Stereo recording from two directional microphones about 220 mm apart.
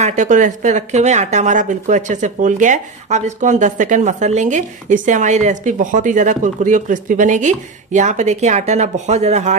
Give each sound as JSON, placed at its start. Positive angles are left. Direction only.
{"t": 0.0, "sound": "speech", "side_deg": -35}